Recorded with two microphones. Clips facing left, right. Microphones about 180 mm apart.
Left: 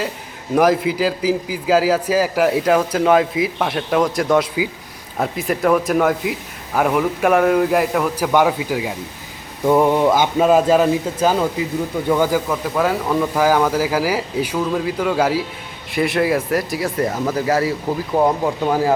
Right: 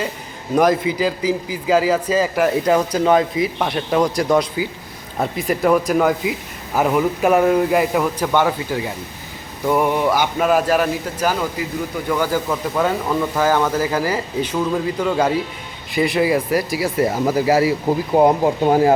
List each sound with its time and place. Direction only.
0.5 s a man's voice: 5° left (ahead or behind)
8.3 s a man's voice: 10° left (ahead or behind)
12.5 s a man's voice: centre (ahead or behind)
18.1 s speech: 25° right (ahead or behind)